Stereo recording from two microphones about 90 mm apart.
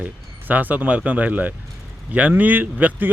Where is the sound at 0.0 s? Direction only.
20° right (ahead or behind).